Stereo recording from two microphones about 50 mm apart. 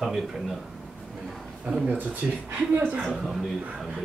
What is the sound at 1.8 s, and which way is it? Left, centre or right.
Speech, right.